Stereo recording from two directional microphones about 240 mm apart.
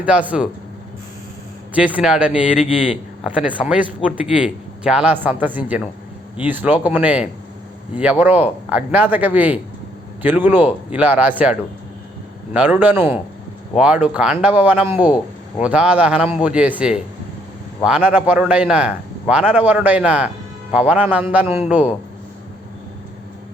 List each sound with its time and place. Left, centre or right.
0.0 s a man's voice: centre
1.7 s a man's voice: centre
2.6 s speech: left
3.2 s a man's voice: centre
12.8 s a man's voice: centre